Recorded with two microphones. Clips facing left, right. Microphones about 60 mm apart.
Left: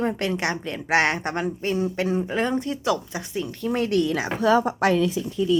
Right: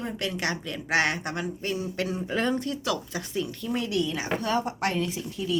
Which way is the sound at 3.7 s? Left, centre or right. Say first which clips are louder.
Left 7 dB; left.